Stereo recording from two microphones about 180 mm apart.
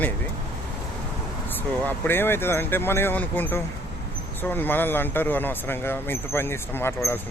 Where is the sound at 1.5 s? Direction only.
10° left (ahead or behind).